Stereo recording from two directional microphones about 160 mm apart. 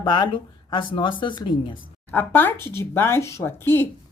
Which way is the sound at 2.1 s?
10° left (ahead or behind).